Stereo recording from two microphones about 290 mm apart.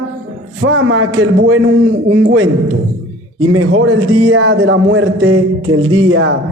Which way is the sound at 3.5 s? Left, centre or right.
Right.